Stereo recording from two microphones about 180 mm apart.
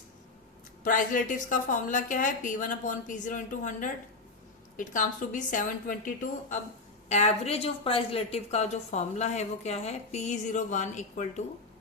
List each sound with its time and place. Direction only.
0.9 s a woman's voice: 45° left (ahead or behind)
7.1 s a woman's voice: 35° left (ahead or behind)